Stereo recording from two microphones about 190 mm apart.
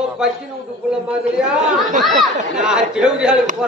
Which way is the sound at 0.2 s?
5° right (ahead or behind).